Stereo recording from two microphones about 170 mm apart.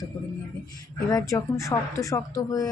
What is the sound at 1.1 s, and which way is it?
A woman's voice, 20° left (ahead or behind).